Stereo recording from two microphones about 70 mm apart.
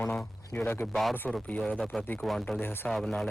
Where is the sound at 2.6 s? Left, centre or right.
Left.